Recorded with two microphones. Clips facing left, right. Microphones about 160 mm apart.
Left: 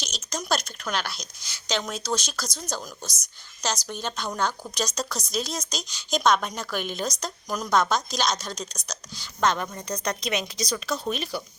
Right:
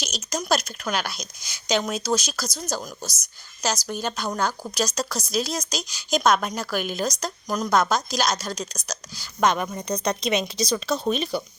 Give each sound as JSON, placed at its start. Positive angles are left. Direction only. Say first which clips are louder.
{"t": 0.0, "sound": "a woman's voice", "louder": "right 4 dB", "side_deg": -10}
{"t": 9.5, "sound": "speech", "louder": "right 3 dB", "side_deg": -15}